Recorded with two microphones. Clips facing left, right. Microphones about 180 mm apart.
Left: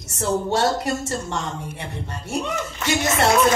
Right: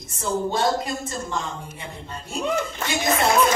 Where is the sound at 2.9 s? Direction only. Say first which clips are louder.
Left 3 dB; 70° left (ahead or behind).